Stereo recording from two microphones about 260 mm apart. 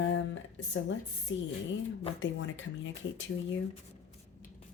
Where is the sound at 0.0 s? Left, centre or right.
Left.